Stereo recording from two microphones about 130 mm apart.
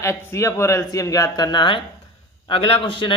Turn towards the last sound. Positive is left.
turn(degrees=40)  # may be behind; listen again after turning